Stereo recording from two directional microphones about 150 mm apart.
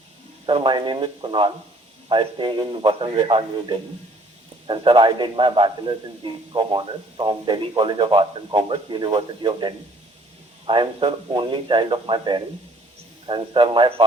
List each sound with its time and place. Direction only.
0.4 s a man's voice: 30° right (ahead or behind)